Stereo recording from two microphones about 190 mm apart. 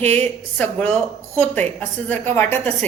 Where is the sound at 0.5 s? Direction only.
10° left (ahead or behind).